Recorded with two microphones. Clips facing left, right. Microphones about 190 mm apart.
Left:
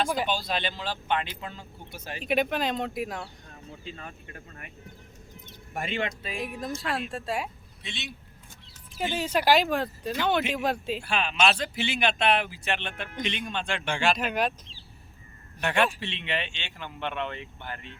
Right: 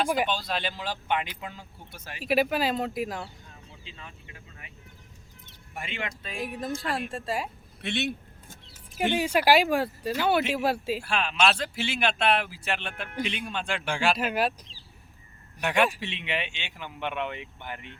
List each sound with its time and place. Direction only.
0.0 s speech: 10° right (ahead or behind)
0.3 s speech: centre (ahead or behind)
3.5 s speech: 45° left (ahead or behind)
5.7 s speech: 40° left (ahead or behind)
6.2 s speech: centre (ahead or behind)
7.8 s vehicle: 60° right (ahead or behind)
9.1 s speech: 10° right (ahead or behind)
15.6 s speech: 10° right (ahead or behind)